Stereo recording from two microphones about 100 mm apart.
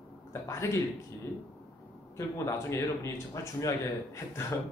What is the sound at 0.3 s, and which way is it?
Speech, 30° left (ahead or behind).